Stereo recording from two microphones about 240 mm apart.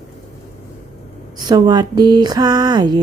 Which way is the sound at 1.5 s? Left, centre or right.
Centre.